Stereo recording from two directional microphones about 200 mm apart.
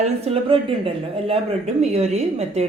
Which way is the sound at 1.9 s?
30° right (ahead or behind).